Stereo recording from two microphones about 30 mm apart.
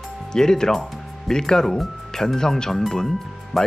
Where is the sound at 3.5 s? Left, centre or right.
Centre.